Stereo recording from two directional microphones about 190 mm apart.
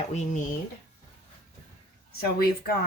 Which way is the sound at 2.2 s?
55° left (ahead or behind).